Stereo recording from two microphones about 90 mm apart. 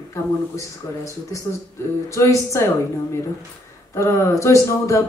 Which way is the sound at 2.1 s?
30° left (ahead or behind).